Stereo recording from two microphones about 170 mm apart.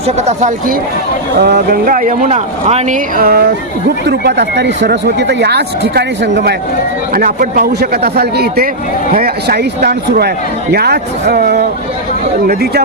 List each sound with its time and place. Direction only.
0.2 s speech: 45° right (ahead or behind)
1.4 s speech: 75° right (ahead or behind); by 3.0 s 40° right (ahead or behind)
3.2 s a man's voice: 65° right (ahead or behind)
4.0 s speech: 75° right (ahead or behind)
7.1 s a man's voice: 55° right (ahead or behind)